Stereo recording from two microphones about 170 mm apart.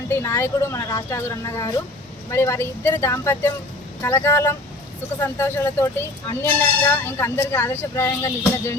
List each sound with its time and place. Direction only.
0.1 s speech: 15° left (ahead or behind)